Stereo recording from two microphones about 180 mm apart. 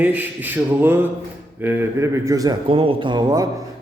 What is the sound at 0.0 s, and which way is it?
A man's voice, 10° right (ahead or behind).